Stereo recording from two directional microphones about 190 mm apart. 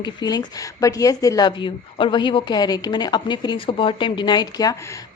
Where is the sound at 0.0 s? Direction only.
20° left (ahead or behind).